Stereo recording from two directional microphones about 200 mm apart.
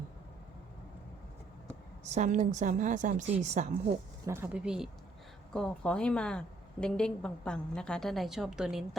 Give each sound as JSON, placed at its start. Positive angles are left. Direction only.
{"t": 2.0, "sound": "a woman's voice", "side_deg": -35}
{"t": 4.3, "sound": "a woman's voice", "side_deg": -10}